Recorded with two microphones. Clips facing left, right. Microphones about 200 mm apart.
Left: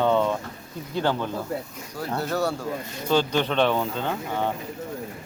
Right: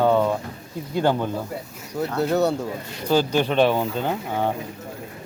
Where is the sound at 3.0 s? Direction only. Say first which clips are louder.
Right 3 dB; 10° right (ahead or behind).